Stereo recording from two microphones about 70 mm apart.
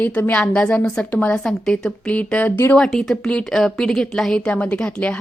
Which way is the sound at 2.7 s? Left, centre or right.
Centre.